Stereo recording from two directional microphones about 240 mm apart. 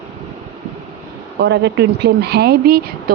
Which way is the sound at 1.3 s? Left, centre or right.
Right.